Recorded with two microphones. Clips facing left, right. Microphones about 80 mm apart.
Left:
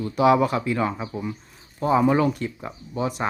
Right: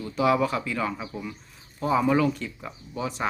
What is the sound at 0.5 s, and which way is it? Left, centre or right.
Speech, left.